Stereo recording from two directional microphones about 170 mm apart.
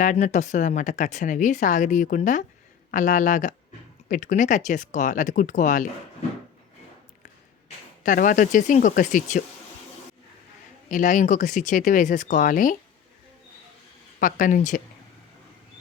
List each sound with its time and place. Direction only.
0.0 s speech: 45° left (ahead or behind)
8.0 s speech: 50° left (ahead or behind)
10.8 s speech: 50° left (ahead or behind)
14.2 s speech: 55° left (ahead or behind)